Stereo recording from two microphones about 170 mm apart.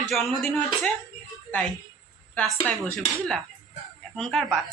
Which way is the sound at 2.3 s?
5° left (ahead or behind).